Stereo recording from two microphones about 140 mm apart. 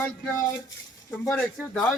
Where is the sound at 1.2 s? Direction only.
15° left (ahead or behind).